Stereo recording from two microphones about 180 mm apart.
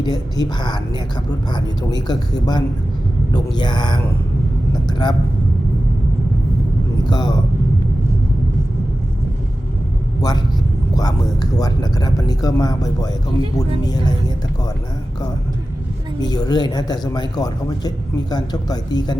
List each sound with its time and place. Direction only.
0.0 s speech: 25° left (ahead or behind)
7.1 s speech: 25° left (ahead or behind)
10.2 s a man's voice: 20° left (ahead or behind)
16.2 s speech: 20° left (ahead or behind)